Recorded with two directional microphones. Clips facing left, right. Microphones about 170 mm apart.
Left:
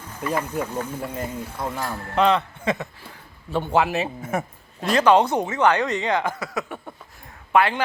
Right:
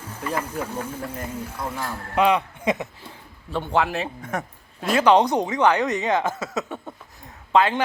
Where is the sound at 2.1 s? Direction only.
10° right (ahead or behind).